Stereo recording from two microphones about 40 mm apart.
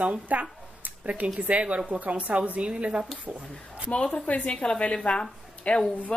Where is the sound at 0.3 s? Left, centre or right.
Right.